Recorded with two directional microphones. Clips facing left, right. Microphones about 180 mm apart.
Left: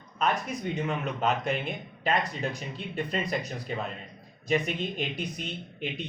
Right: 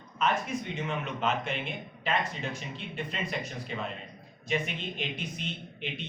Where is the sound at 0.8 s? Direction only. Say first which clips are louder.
Left 3 dB; 40° left (ahead or behind).